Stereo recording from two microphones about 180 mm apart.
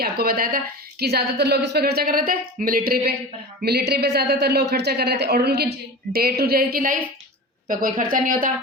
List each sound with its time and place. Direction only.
0.0 s a woman's voice: 55° right (ahead or behind)